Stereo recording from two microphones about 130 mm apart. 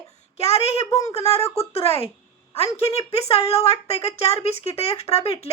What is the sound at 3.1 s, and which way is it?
A woman's voice, 55° left (ahead or behind).